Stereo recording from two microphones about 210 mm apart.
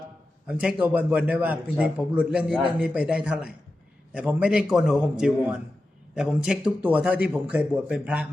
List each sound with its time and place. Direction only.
0.4 s a man's voice: 5° right (ahead or behind)